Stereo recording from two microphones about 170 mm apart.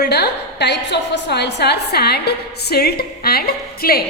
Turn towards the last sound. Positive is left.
turn(degrees=60)  # may be behind; listen again after turning